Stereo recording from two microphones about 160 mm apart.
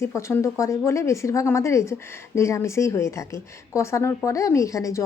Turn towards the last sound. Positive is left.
turn(degrees=20)  # may be behind; listen again after turning